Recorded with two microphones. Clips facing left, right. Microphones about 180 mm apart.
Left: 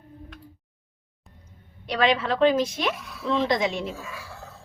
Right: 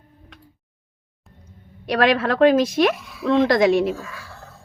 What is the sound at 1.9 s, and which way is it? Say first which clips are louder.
A woman's voice: right 4 dB; 65° right (ahead or behind).